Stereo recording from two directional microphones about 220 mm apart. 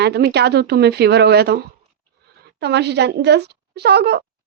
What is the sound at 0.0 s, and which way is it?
A woman's voice, 50° right (ahead or behind).